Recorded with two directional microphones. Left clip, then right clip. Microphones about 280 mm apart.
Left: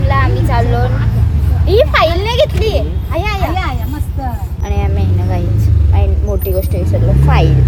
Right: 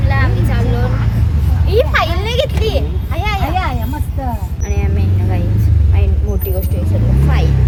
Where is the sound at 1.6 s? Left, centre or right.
Centre.